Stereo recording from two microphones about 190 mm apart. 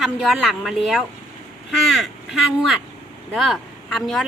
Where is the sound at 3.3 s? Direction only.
Centre (ahead or behind).